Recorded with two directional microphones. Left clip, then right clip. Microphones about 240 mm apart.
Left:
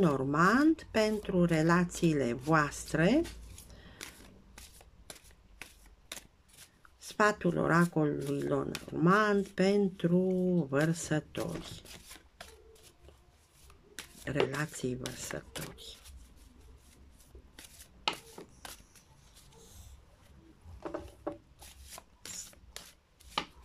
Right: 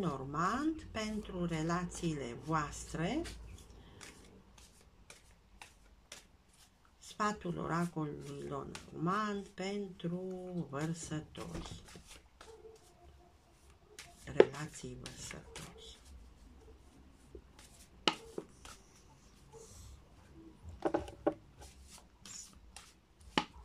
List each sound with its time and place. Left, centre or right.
0.0 s speech: left
4.0 s scissors: left
7.0 s speech: left
14.5 s speech: left
18.1 s a sound: right
20.8 s a sound: right